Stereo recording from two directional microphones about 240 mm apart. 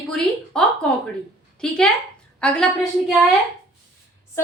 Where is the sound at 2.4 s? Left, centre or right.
Centre.